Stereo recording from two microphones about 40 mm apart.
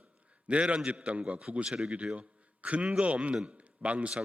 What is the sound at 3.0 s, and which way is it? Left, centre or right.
A man's voice, right.